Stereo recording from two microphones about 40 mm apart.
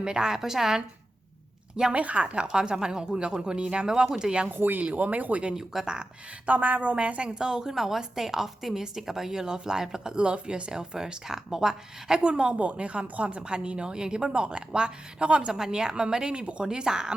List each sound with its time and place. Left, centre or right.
0.0 s speech: centre
1.9 s speech: right
4.4 s speech: right
4.8 s a woman's voice: right
5.5 s speech: centre
6.4 s a woman's voice: right
7.3 s speech: centre
7.7 s speech: centre; by 16.6 s right
16.6 s speech: centre